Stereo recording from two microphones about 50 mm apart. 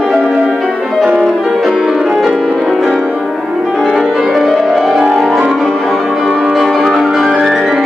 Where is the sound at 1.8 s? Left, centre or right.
Centre.